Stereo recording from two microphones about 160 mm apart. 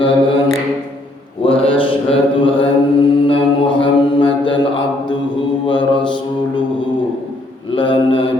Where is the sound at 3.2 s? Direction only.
30° left (ahead or behind).